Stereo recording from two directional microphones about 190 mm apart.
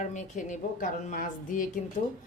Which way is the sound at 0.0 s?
40° left (ahead or behind).